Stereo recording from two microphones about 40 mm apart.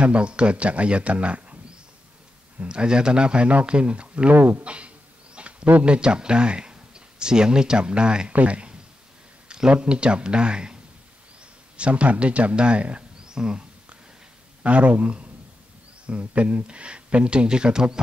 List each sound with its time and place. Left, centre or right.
0.0 s speech: right
2.6 s speech: right
4.3 s speech: right
4.6 s a sound: right
5.9 s speech: right
8.3 s speech: right
13.2 s a sound: centre
14.6 s speech: right